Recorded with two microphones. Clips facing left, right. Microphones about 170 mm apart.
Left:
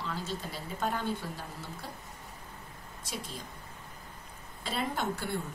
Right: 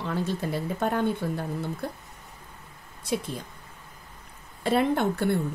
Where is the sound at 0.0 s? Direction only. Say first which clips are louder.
Right 8 dB; 60° right (ahead or behind).